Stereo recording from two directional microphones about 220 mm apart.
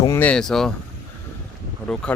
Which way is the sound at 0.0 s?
10° left (ahead or behind).